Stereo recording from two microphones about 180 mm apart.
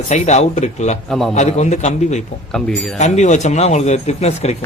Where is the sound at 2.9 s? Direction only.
40° left (ahead or behind).